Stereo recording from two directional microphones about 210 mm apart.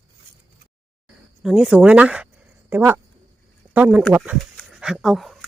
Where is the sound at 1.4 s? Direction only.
5° right (ahead or behind).